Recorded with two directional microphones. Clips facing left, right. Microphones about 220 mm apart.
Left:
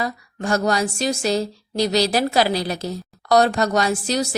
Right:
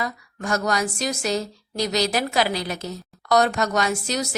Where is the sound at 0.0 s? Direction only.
30° left (ahead or behind).